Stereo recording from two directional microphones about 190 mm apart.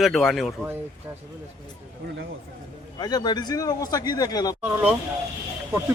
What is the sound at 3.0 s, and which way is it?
A man's voice, 20° left (ahead or behind).